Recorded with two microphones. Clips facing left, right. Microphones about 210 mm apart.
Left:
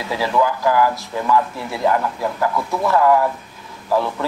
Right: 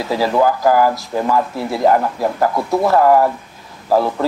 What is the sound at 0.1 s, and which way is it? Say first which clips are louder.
Speech: right 4 dB; 40° right (ahead or behind).